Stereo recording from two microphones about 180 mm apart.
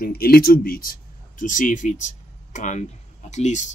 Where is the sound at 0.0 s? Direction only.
55° left (ahead or behind).